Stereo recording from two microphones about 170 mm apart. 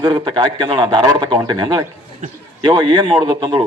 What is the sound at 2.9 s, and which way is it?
Speech, 25° right (ahead or behind).